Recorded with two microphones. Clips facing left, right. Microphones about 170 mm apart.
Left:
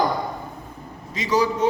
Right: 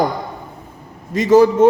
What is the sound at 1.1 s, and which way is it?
Speech, 50° right (ahead or behind).